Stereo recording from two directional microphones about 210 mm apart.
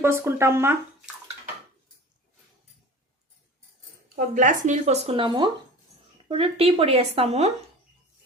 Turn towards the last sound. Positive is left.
turn(degrees=-30)  # may be behind; listen again after turning